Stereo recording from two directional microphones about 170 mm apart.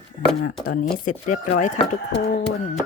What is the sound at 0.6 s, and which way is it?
Speech, 50° left (ahead or behind).